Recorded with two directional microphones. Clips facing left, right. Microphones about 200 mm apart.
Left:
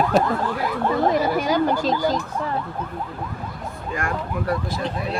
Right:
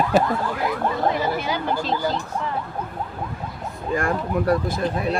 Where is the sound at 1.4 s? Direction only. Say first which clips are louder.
Left 5 dB; 40° left (ahead or behind).